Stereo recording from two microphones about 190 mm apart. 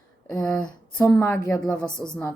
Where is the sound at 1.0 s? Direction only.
15° left (ahead or behind).